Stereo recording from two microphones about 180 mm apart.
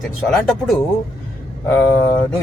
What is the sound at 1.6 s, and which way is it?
Speech, 15° left (ahead or behind).